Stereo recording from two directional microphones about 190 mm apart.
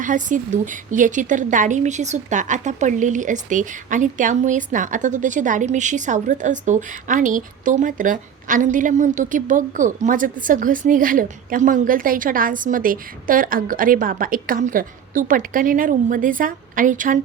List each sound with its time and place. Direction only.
0.0 s a woman's voice: 45° right (ahead or behind)